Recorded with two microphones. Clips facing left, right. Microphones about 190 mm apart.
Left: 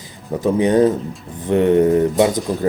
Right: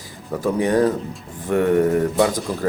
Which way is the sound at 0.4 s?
20° left (ahead or behind).